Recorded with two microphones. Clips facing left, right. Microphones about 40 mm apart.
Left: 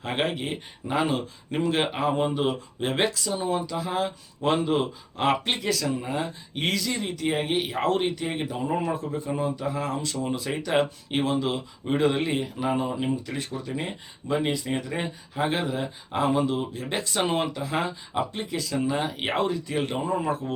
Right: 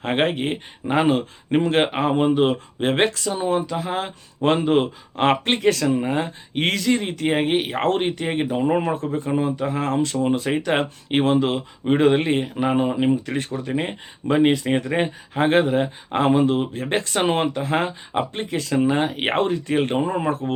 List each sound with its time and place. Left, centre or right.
0.0 s speech: right